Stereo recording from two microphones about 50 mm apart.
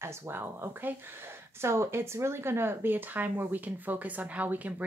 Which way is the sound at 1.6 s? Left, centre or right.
Right.